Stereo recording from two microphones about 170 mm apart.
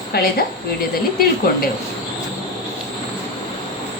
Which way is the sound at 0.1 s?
65° left (ahead or behind).